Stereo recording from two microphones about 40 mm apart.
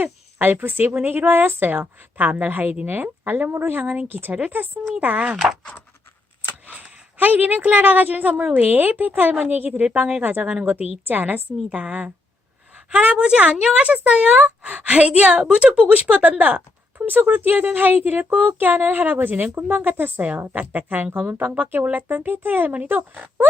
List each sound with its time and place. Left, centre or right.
0.0 s a sound: right
0.6 s speech: right
2.1 s speech: right
3.5 s speech: right
3.8 s speech: right
4.9 s speech: right
6.7 s a woman's voice: right
9.8 s speech: right
10.2 s speech: right
11.0 s speech: right
11.7 s a woman's voice: right
15.9 s speech: right
16.4 s speech: right
20.5 s speech: right